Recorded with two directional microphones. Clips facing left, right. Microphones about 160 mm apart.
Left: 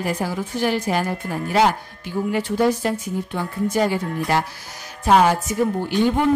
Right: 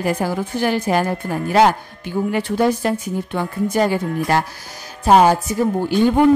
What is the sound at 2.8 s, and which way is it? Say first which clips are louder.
Speech: right 3 dB; 55° right (ahead or behind).